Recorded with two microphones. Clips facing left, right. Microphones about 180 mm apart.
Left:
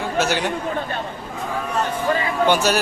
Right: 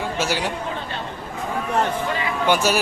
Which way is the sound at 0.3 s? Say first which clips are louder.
Left 2 dB; 5° right (ahead or behind).